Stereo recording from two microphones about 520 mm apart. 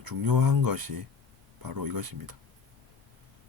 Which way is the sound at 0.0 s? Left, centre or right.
Right.